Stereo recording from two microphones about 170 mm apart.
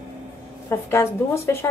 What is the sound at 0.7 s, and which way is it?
Speech, 15° left (ahead or behind).